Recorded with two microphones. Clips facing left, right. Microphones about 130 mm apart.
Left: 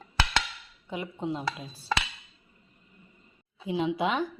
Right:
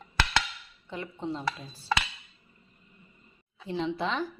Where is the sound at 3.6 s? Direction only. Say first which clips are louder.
Left 3 dB; 10° left (ahead or behind).